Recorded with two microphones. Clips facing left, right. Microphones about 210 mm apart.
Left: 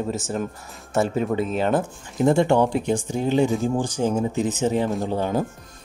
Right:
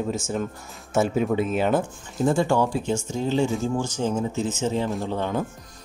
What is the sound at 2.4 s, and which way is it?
Speech, 20° left (ahead or behind).